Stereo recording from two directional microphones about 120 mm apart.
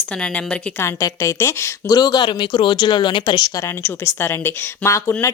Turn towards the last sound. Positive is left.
turn(degrees=25)  # may be behind; listen again after turning